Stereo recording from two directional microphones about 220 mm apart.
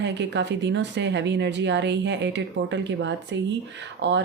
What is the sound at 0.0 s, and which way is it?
Speech, 50° right (ahead or behind).